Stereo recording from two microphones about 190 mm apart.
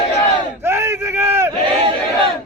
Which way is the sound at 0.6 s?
15° right (ahead or behind).